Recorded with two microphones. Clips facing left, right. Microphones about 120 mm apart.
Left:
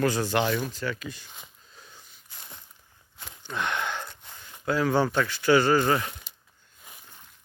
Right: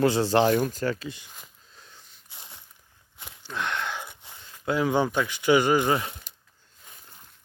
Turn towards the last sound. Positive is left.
turn(degrees=-15)  # may be behind; listen again after turning